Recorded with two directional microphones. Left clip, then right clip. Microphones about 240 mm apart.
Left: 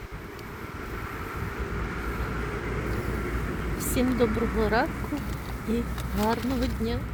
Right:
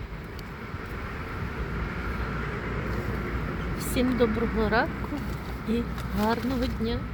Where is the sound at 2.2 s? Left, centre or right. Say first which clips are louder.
Even; left.